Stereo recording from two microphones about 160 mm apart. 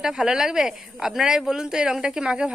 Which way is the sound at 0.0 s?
5° right (ahead or behind).